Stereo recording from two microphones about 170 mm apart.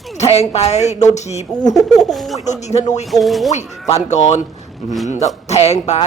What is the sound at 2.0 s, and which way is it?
Speech, centre (ahead or behind).